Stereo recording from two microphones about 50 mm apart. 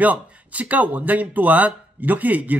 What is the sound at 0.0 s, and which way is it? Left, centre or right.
Speech, right.